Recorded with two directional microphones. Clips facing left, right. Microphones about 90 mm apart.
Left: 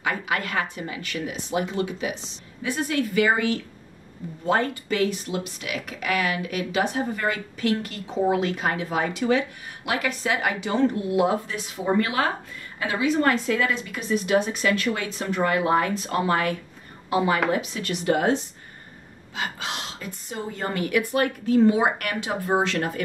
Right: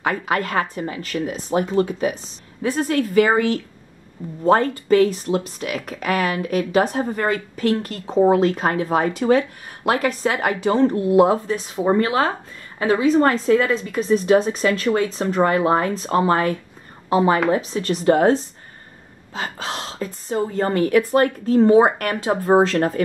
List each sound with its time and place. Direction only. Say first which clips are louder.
0.0 s speech: right 5 dB; 40° right (ahead or behind)